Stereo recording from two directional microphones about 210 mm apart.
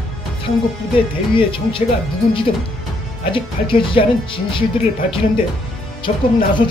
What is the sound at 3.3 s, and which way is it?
A man's voice, 25° left (ahead or behind).